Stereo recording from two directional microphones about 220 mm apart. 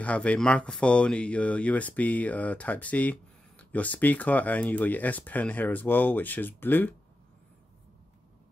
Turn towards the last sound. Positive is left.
turn(degrees=10)  # may be behind; listen again after turning